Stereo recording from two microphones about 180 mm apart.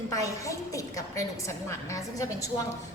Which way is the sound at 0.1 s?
20° left (ahead or behind).